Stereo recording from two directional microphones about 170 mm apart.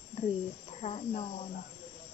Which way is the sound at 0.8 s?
35° left (ahead or behind).